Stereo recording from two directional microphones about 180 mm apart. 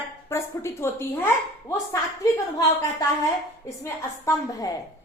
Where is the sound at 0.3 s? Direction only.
15° left (ahead or behind).